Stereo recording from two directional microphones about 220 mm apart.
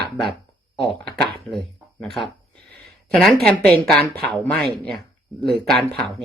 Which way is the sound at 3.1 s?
5° left (ahead or behind).